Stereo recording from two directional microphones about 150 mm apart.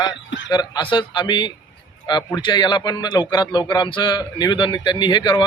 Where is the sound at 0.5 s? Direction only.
30° left (ahead or behind).